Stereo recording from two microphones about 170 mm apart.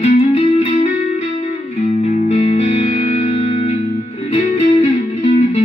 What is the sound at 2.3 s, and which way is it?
Music, 40° left (ahead or behind).